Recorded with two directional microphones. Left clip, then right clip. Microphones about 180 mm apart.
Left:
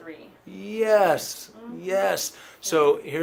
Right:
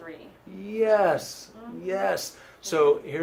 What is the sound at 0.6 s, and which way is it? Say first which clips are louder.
Speech: left 2 dB; 45° left (ahead or behind).